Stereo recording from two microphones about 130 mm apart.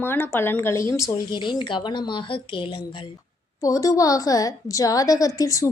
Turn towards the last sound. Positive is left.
turn(degrees=25)  # may be behind; listen again after turning